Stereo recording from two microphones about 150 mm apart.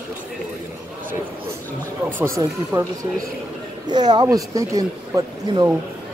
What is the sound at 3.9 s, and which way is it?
Speech, 30° right (ahead or behind).